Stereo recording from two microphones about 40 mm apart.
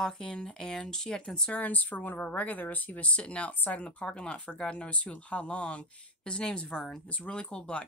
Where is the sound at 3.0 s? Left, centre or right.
Left.